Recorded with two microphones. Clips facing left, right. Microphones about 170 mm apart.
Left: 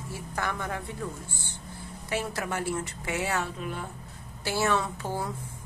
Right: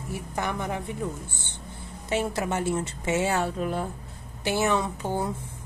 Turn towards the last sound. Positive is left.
turn(degrees=-20)  # may be behind; listen again after turning